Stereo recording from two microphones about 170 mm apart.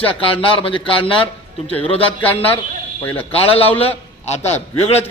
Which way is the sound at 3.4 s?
35° left (ahead or behind).